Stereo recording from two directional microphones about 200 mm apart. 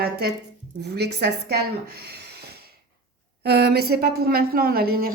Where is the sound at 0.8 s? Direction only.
55° right (ahead or behind).